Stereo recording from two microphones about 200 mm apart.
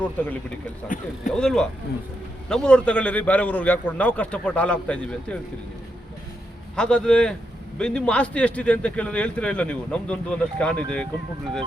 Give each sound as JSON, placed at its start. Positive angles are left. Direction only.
{"t": 0.9, "sound": "speech", "side_deg": 40}
{"t": 1.3, "sound": "a man's voice", "side_deg": 5}
{"t": 6.7, "sound": "a man's voice", "side_deg": 5}